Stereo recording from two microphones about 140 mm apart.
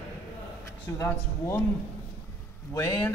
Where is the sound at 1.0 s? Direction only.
20° left (ahead or behind).